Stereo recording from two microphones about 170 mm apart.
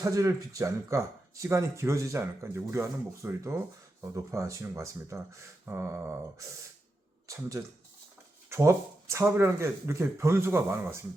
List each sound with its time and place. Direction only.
0.0 s speech: 20° right (ahead or behind)
7.3 s speech: 20° right (ahead or behind)